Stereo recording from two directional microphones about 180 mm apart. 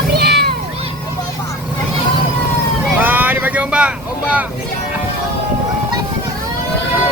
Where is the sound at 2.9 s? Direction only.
10° right (ahead or behind).